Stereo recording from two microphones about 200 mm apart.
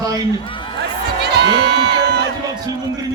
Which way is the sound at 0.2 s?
25° left (ahead or behind).